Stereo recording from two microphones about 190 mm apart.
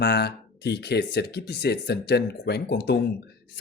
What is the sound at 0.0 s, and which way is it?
Speech, 60° left (ahead or behind).